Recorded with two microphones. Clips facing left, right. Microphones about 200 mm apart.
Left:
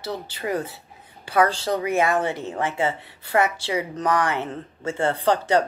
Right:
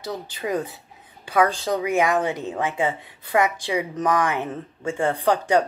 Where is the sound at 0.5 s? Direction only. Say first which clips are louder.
Right 1 dB; 15° right (ahead or behind).